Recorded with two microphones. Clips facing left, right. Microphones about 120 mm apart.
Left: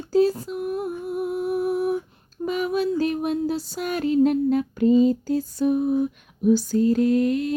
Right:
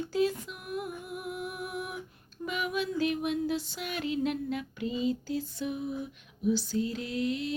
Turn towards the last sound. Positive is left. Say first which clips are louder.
# left 11 dB
turn(degrees=50)  # may be behind; listen again after turning